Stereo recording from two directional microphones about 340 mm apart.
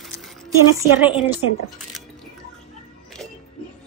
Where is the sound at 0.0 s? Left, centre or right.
Centre.